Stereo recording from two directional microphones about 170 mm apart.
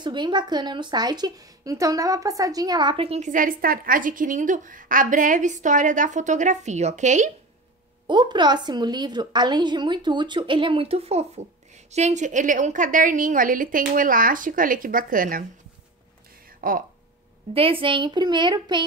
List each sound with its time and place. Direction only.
0.0 s speech: 25° right (ahead or behind); by 7.2 s 45° right (ahead or behind)
8.1 s a woman's voice: 25° right (ahead or behind); by 15.4 s 55° right (ahead or behind)
16.4 s a sound: 55° right (ahead or behind)
17.6 s a woman's voice: 30° right (ahead or behind)